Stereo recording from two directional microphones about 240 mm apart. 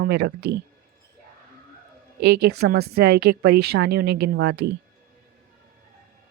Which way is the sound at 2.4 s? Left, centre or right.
Right.